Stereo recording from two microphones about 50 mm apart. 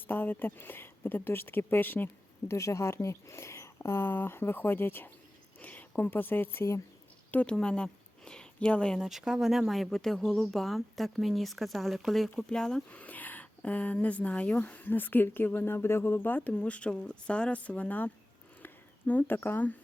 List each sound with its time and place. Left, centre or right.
0.1 s speech: left
2.5 s speech: left
5.5 s a sound: left
6.0 s speech: left
7.4 s speech: centre
9.0 s speech: centre
12.5 s speech: centre
12.9 s speech: left
16.4 s speech: left
18.6 s a sound: left